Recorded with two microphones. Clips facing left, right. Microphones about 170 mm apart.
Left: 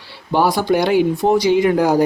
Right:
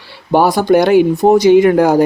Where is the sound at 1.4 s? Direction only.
60° right (ahead or behind).